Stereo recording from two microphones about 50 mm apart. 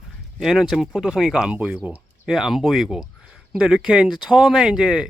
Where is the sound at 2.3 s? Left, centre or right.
Centre.